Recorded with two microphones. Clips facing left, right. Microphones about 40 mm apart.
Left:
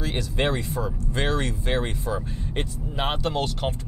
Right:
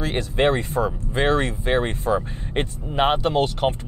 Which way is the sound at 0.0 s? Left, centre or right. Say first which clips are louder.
Right 5 dB; right.